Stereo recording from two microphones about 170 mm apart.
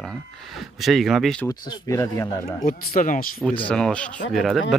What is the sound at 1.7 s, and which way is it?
Speech, 20° left (ahead or behind).